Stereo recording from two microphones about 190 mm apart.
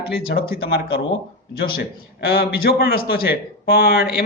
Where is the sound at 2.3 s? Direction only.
55° left (ahead or behind).